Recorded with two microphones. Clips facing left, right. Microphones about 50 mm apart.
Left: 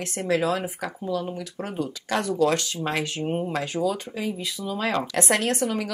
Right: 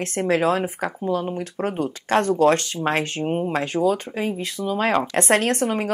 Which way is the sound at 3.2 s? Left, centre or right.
Right.